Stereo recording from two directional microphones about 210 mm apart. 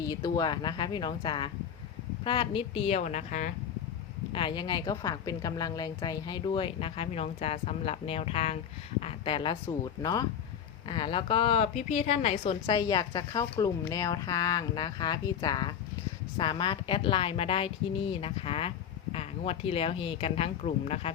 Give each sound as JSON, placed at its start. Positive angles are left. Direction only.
{"t": 0.0, "sound": "a woman's voice", "side_deg": 20}
{"t": 4.3, "sound": "a woman's voice", "side_deg": 25}